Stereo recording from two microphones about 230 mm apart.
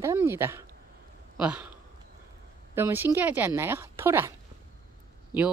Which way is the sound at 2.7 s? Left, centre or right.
Centre.